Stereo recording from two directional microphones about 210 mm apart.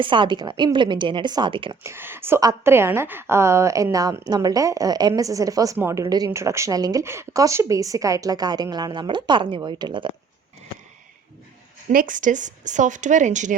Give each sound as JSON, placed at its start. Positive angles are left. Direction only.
{"t": 0.0, "sound": "a woman's voice", "side_deg": -25}
{"t": 1.8, "sound": "a woman's voice", "side_deg": -10}
{"t": 11.9, "sound": "a woman's voice", "side_deg": -40}